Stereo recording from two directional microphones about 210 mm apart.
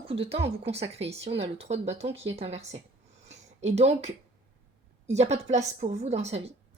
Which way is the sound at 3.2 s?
30° right (ahead or behind).